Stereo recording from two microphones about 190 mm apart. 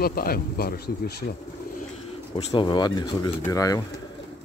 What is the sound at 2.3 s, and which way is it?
Speech, 20° left (ahead or behind).